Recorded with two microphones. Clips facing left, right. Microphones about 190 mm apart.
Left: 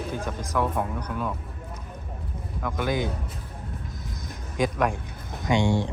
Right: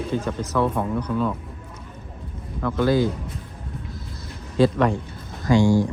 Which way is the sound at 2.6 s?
15° left (ahead or behind).